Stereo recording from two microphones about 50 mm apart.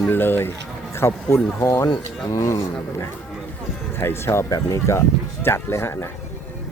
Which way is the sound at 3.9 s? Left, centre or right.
Left.